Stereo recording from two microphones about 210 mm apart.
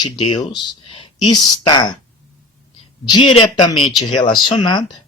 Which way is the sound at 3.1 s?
25° left (ahead or behind).